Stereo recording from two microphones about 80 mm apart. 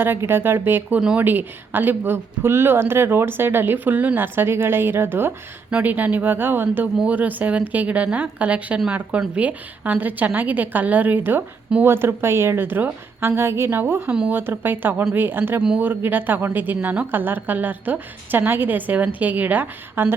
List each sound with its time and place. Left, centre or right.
0.0 s a woman's voice: right
0.9 s a woman's voice: centre
1.2 s a woman's voice: right